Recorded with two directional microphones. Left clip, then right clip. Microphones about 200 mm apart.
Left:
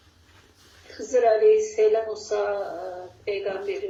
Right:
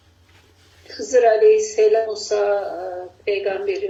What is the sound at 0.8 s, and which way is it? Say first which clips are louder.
A woman's voice: right 5 dB; 25° right (ahead or behind).